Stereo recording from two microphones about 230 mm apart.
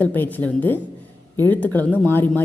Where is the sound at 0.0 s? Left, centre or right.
Centre.